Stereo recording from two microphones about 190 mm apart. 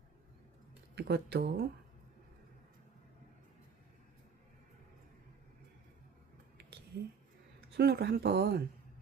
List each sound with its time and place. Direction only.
0.9 s speech: 60° right (ahead or behind)
7.8 s speech: 60° right (ahead or behind)